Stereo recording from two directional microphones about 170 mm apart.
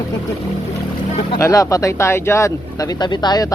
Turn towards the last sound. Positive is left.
turn(degrees=25)  # may be behind; listen again after turning